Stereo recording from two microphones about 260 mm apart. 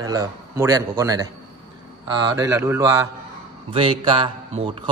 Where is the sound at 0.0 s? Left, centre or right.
Centre.